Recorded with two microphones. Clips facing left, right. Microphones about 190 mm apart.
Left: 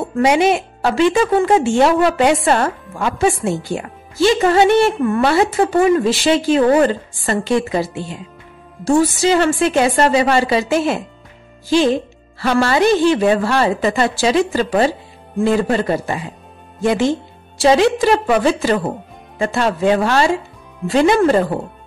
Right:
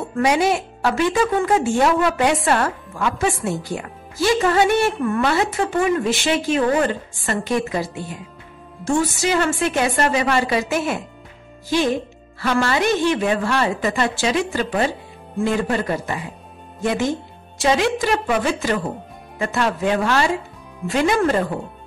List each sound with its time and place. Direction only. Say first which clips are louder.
0.0 s a woman's voice: left 4 dB; 25° left (ahead or behind)